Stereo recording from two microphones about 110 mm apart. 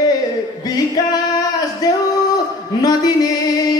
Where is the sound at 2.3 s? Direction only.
35° left (ahead or behind).